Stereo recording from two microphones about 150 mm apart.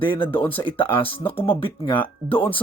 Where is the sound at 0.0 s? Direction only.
35° left (ahead or behind).